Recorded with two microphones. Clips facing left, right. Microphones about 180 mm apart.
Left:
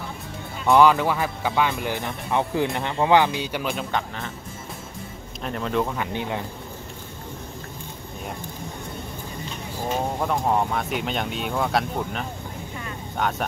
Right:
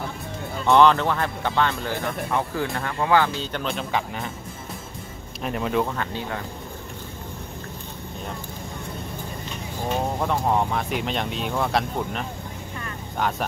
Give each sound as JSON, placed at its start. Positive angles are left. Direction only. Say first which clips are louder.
{"t": 0.7, "sound": "speech", "louder": "even", "side_deg": 10}
{"t": 5.4, "sound": "speech", "louder": "right 1 dB", "side_deg": -5}
{"t": 5.9, "sound": "speech", "louder": "left 2 dB", "side_deg": 20}
{"t": 10.1, "sound": "speech", "louder": "even", "side_deg": 0}